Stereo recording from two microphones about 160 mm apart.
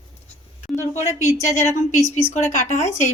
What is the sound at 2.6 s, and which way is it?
Speech, 45° left (ahead or behind).